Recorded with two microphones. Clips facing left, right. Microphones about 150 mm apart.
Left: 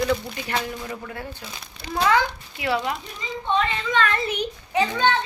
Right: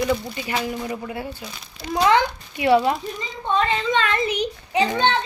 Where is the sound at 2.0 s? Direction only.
25° right (ahead or behind).